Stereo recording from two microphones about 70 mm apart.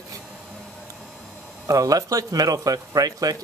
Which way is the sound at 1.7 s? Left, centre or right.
Right.